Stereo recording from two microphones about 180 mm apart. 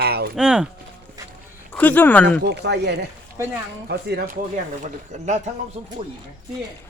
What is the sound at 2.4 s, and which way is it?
Speech, 70° right (ahead or behind).